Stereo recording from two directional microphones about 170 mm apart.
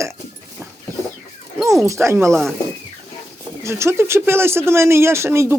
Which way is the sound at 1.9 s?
15° right (ahead or behind).